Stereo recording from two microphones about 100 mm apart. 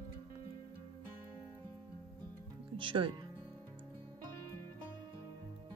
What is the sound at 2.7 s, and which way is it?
Speech, 55° right (ahead or behind).